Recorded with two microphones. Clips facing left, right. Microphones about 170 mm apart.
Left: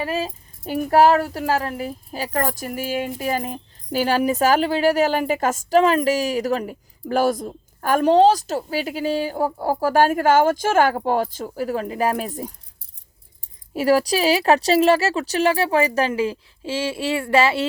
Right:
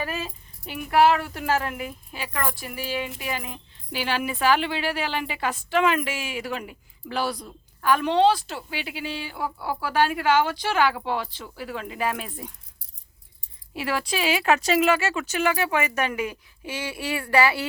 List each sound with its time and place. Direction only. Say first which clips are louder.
0.0 s speech: left 6 dB; 30° left (ahead or behind)
13.7 s speech: left 9 dB; 40° left (ahead or behind)